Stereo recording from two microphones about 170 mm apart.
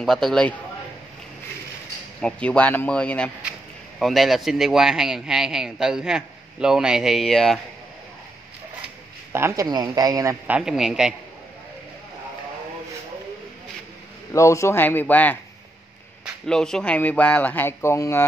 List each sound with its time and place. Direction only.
0.0 s speech: centre (ahead or behind)
2.2 s speech: 5° left (ahead or behind)
9.3 s speech: 15° right (ahead or behind)
10.4 s speech: 5° right (ahead or behind)
14.3 s speech: 15° left (ahead or behind)
16.4 s speech: 5° left (ahead or behind)